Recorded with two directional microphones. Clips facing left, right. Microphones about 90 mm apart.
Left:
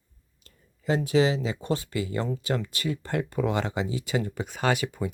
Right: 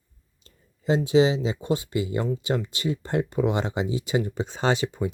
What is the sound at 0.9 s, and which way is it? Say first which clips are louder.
Speech: right 3 dB; 20° right (ahead or behind).